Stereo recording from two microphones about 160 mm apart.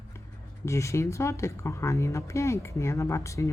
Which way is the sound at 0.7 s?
20° left (ahead or behind).